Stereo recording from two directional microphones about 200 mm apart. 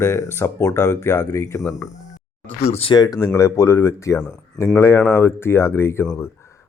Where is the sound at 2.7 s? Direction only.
25° left (ahead or behind).